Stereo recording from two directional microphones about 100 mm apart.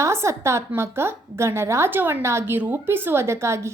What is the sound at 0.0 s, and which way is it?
A woman's voice, 30° right (ahead or behind).